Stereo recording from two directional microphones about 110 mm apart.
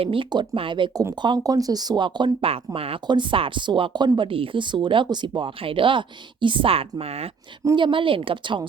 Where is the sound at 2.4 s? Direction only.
60° right (ahead or behind).